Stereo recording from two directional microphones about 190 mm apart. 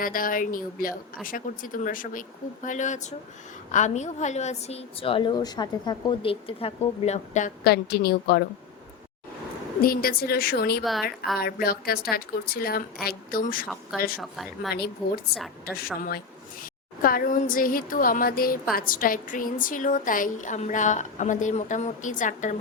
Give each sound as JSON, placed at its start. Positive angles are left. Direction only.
{"t": 0.0, "sound": "a woman's voice", "side_deg": 45}
{"t": 7.6, "sound": "a woman's voice", "side_deg": 55}
{"t": 9.8, "sound": "a woman's voice", "side_deg": 50}
{"t": 14.2, "sound": "speech", "side_deg": 0}
{"t": 14.7, "sound": "a woman's voice", "side_deg": 55}